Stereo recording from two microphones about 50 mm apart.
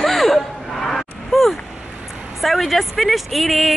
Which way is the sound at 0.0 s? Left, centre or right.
Centre.